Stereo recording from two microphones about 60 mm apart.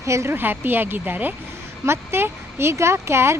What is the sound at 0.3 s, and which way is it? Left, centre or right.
Speech, right.